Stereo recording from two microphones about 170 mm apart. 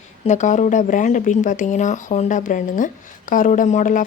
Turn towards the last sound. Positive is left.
turn(degrees=50)  # may be behind; listen again after turning